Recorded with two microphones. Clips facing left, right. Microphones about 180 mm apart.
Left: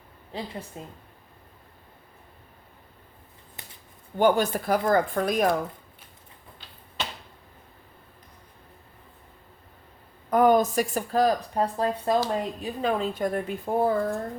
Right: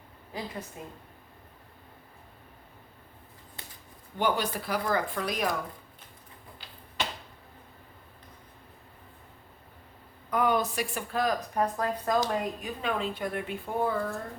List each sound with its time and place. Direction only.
0.3 s speech: 30° left (ahead or behind)
4.2 s speech: 50° left (ahead or behind)
10.2 s speech: 45° left (ahead or behind)